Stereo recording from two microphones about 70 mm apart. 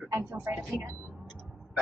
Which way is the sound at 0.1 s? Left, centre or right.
Right.